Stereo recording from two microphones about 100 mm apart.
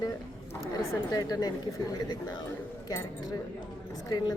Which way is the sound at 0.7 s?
40° left (ahead or behind).